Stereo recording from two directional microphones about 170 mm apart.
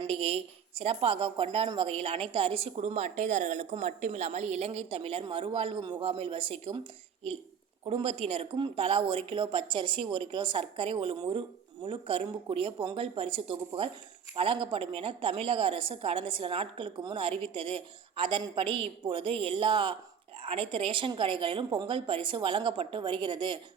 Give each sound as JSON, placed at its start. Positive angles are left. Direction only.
{"t": 0.0, "sound": "a woman's voice", "side_deg": -35}
{"t": 7.9, "sound": "a woman's voice", "side_deg": -35}